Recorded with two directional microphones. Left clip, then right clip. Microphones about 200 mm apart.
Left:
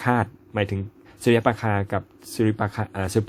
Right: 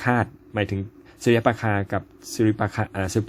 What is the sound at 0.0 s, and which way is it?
Speech, 5° left (ahead or behind).